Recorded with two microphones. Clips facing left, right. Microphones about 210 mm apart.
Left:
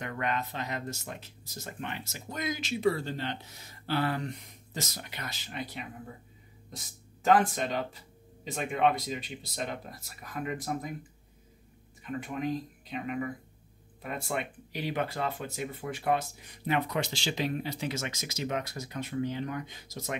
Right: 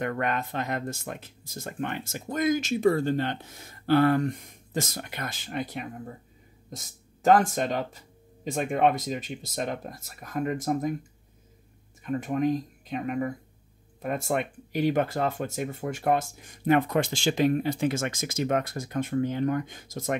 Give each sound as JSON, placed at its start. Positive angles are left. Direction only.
{"t": 0.0, "sound": "speech", "side_deg": -55}
{"t": 12.0, "sound": "speech", "side_deg": -45}